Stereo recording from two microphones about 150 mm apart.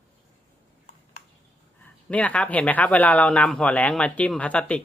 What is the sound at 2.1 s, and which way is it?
Speech, 10° left (ahead or behind).